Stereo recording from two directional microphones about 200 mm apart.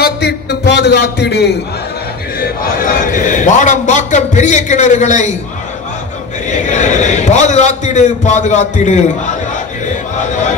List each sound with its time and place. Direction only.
0.0 s a sound: 55° left (ahead or behind)
2.4 s a man's voice: 45° left (ahead or behind)
6.5 s a man's voice: 35° left (ahead or behind)
9.8 s chant: 35° left (ahead or behind)